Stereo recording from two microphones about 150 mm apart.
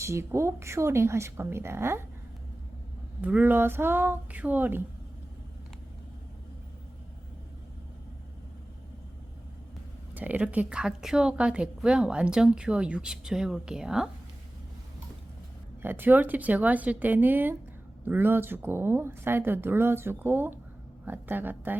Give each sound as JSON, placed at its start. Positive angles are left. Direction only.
{"t": 0.0, "sound": "speech", "side_deg": -20}
{"t": 3.2, "sound": "speech", "side_deg": -10}
{"t": 10.2, "sound": "a woman's voice", "side_deg": -10}
{"t": 15.8, "sound": "speech", "side_deg": -15}